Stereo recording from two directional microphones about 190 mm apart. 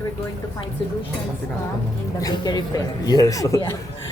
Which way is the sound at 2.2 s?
20° left (ahead or behind).